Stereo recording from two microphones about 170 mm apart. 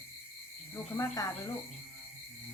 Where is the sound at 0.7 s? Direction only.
20° left (ahead or behind).